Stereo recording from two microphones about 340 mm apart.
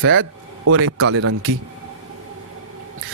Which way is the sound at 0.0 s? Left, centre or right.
Right.